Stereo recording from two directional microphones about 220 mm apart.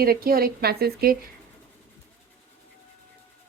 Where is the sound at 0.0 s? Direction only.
45° right (ahead or behind).